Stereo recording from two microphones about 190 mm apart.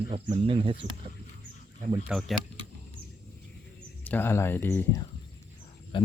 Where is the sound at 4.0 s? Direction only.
10° left (ahead or behind).